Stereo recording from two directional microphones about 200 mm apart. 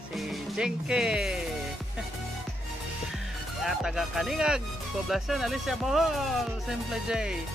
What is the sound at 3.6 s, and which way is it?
Speech, centre (ahead or behind).